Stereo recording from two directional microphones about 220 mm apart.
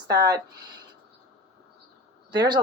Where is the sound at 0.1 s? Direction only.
15° right (ahead or behind).